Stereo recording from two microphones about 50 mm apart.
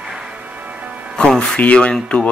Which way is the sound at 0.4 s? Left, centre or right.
Right.